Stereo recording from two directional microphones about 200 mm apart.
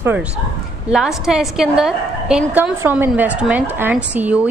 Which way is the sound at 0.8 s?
5° right (ahead or behind).